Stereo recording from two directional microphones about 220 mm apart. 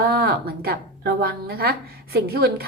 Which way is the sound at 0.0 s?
50° right (ahead or behind).